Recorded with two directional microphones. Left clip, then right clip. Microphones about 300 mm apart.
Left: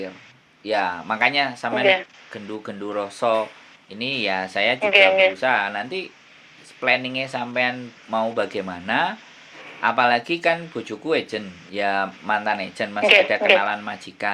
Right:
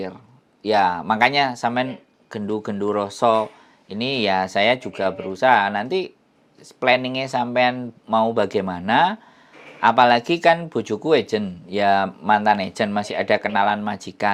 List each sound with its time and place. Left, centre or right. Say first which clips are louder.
0.6 s speech: right 5 dB; right